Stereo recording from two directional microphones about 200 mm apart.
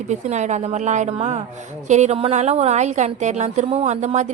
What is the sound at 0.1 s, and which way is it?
A woman's voice, 35° right (ahead or behind).